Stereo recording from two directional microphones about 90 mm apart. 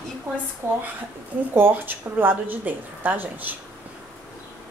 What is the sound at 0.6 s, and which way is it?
Speech, 25° right (ahead or behind).